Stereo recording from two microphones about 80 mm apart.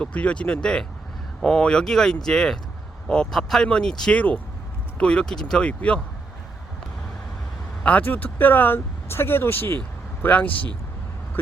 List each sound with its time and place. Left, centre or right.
0.0 s speech: centre
7.9 s speech: left